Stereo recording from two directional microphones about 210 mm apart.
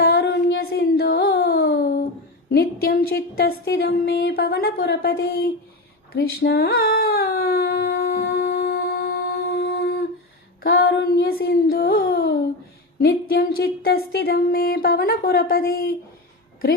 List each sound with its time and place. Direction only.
0.0 s music: 50° left (ahead or behind)
2.5 s speech: 50° left (ahead or behind)
6.1 s a sound: 50° left (ahead or behind)
10.6 s child singing: 50° left (ahead or behind)
13.0 s speech: 50° left (ahead or behind)